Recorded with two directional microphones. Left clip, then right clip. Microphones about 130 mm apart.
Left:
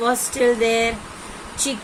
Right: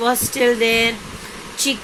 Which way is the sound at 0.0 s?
20° right (ahead or behind).